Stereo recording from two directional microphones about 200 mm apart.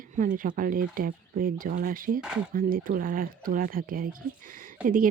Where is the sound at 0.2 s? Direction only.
45° right (ahead or behind).